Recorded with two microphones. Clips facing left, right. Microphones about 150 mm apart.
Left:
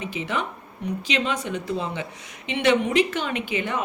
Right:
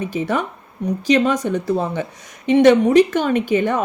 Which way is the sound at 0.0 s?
45° right (ahead or behind).